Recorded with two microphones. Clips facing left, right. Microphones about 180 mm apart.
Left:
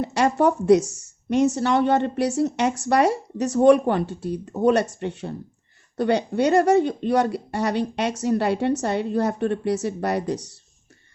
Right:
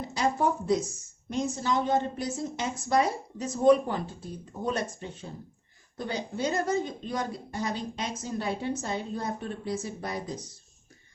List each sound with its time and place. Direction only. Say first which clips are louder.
0.0 s a woman's voice: left 8 dB; 70° left (ahead or behind)